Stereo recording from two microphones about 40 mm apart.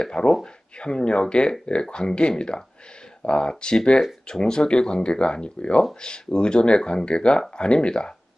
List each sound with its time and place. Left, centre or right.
0.0 s speech: left